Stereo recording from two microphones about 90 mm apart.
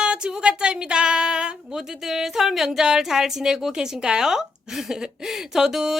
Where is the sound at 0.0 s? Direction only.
10° right (ahead or behind).